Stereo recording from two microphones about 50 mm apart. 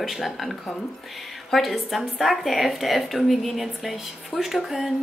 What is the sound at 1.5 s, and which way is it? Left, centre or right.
A woman's voice, centre.